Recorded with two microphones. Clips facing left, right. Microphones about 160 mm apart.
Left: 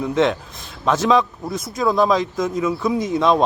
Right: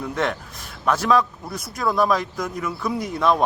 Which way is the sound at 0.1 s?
20° left (ahead or behind).